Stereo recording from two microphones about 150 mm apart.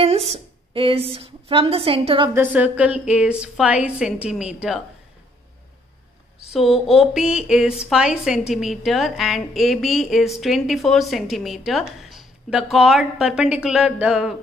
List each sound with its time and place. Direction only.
0.0 s a sound: 40° right (ahead or behind)
0.7 s a woman's voice: 40° right (ahead or behind)
2.3 s a woman's voice: 10° right (ahead or behind)
6.5 s a woman's voice: centre (ahead or behind)